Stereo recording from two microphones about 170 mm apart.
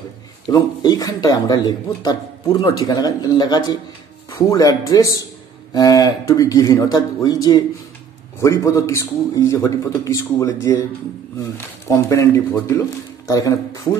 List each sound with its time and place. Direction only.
0.5 s a man's voice: 20° left (ahead or behind)